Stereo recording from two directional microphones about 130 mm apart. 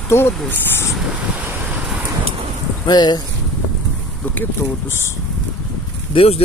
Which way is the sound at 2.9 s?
35° left (ahead or behind).